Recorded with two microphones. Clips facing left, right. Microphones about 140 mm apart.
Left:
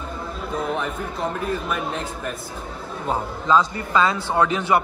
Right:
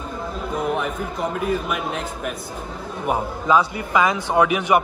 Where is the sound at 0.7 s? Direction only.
5° right (ahead or behind).